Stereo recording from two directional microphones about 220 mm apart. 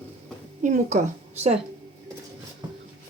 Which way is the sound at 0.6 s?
35° right (ahead or behind).